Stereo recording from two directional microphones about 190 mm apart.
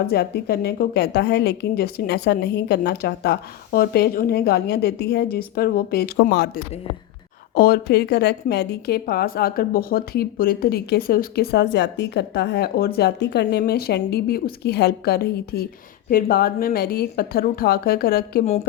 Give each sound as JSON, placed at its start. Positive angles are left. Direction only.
{"t": 0.1, "sound": "a woman's voice", "side_deg": 55}